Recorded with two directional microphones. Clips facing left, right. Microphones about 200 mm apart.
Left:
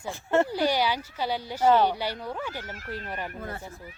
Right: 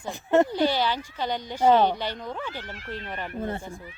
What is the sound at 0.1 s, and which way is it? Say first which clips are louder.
Speech: right 3 dB; 15° right (ahead or behind).